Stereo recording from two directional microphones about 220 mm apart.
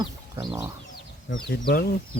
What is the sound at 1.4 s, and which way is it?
Speech, 45° left (ahead or behind).